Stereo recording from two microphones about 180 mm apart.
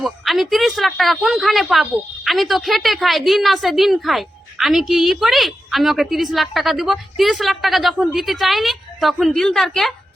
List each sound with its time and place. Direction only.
0.0 s a woman's voice: centre (ahead or behind)